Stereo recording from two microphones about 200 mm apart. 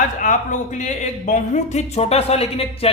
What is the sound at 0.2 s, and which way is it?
Speech, 40° left (ahead or behind).